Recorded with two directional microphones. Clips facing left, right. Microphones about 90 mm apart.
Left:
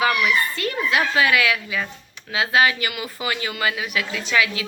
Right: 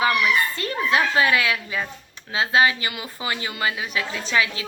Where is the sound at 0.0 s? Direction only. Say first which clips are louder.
Even; 30° right (ahead or behind).